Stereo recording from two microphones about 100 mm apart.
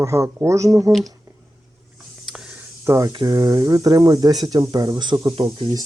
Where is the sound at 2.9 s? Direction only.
30° right (ahead or behind).